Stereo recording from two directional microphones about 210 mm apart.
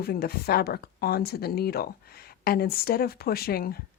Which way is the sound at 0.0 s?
45° left (ahead or behind).